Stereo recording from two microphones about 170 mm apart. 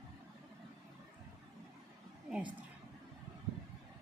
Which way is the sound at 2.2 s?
5° right (ahead or behind).